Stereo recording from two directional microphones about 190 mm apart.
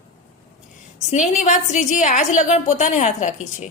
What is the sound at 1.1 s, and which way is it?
A woman's voice, 40° left (ahead or behind).